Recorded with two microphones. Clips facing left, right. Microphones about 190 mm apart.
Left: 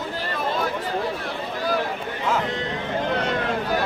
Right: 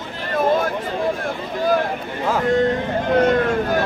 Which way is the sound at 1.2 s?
50° right (ahead or behind).